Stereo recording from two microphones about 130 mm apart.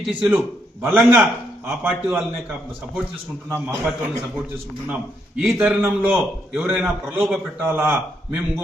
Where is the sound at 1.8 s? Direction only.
15° right (ahead or behind).